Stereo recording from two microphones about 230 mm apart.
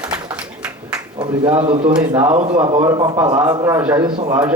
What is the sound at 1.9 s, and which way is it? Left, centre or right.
Speech, centre.